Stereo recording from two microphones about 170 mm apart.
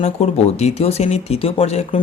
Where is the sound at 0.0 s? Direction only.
40° left (ahead or behind).